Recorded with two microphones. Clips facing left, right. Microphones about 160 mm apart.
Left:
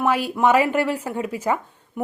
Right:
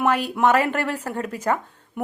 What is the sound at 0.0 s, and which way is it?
Speech, 5° left (ahead or behind).